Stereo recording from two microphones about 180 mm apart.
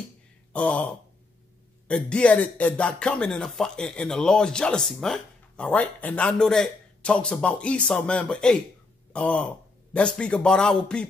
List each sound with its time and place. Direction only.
0.5 s speech: 5° left (ahead or behind)